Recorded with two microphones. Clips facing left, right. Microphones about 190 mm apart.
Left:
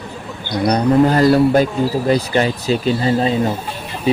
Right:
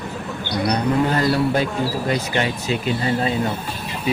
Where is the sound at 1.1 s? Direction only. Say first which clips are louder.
Left 7 dB; 40° left (ahead or behind).